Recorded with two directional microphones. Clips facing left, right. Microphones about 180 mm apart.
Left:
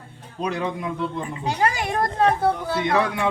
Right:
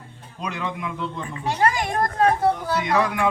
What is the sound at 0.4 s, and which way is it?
Speech, 35° left (ahead or behind).